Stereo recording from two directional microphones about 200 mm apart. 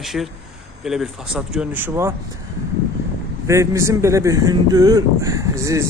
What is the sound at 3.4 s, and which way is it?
Speech, 15° right (ahead or behind).